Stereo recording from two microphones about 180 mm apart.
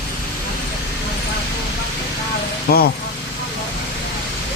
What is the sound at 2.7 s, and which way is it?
Speech, 60° left (ahead or behind).